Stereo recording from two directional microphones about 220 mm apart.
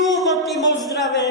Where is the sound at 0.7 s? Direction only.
15° left (ahead or behind).